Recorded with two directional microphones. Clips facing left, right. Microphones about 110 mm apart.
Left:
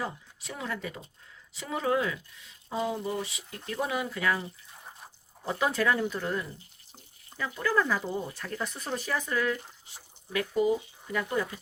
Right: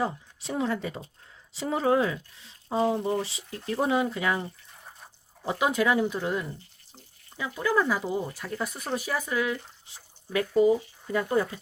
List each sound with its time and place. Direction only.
0.0 s speech: 30° right (ahead or behind)
5.5 s speech: 15° right (ahead or behind)
10.3 s speech: 30° right (ahead or behind)